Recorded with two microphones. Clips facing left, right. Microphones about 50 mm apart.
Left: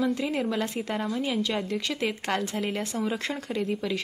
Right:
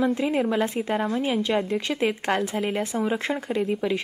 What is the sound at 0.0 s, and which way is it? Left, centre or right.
Speech, right.